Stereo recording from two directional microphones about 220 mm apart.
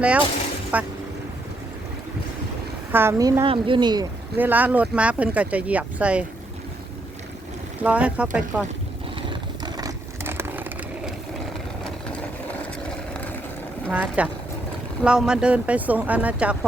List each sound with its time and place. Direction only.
0.7 s speech: 5° right (ahead or behind)
2.9 s speech: 10° right (ahead or behind)
4.4 s speech: 10° right (ahead or behind)
7.8 s speech: 5° right (ahead or behind)
9.3 s vehicle: 20° right (ahead or behind)
13.9 s speech: 5° right (ahead or behind)